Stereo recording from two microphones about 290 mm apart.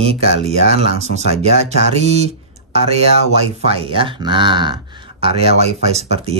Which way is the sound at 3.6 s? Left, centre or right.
Centre.